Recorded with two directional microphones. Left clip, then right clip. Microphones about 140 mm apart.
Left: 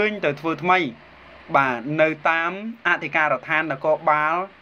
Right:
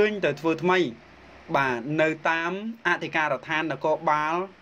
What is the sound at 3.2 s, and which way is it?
Speech, 30° right (ahead or behind).